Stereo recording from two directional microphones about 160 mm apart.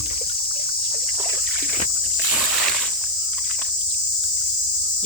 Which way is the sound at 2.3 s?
5° right (ahead or behind).